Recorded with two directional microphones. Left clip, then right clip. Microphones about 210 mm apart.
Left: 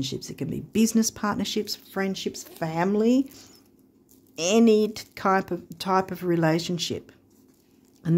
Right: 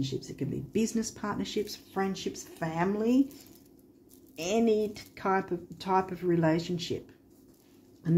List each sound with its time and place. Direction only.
0.0 s speech: 50° left (ahead or behind)
4.4 s speech: 50° left (ahead or behind)